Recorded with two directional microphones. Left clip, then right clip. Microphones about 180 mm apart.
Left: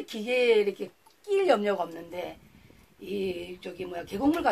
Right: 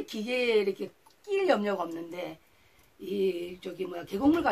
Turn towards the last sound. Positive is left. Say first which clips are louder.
# right 1 dB
turn(degrees=0)  # may be behind; listen again after turning